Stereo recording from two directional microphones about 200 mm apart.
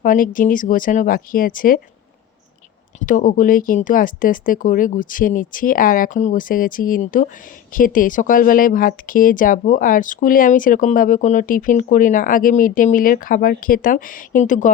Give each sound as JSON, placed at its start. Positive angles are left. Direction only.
{"t": 0.0, "sound": "speech", "side_deg": 40}
{"t": 3.0, "sound": "speech", "side_deg": 40}